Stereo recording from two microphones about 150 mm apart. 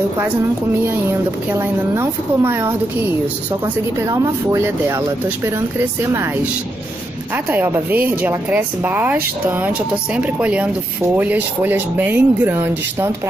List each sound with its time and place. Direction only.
1.5 s speech: 15° right (ahead or behind)
4.1 s speech: 20° right (ahead or behind)
7.5 s speech: 10° right (ahead or behind)